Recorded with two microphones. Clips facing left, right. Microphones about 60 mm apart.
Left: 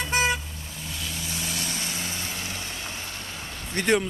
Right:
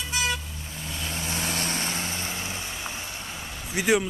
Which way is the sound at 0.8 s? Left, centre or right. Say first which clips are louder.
Right 2 dB; right.